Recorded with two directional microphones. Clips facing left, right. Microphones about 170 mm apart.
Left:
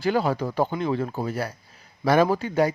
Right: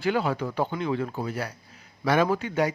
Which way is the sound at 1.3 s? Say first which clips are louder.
Left 3 dB; 45° left (ahead or behind).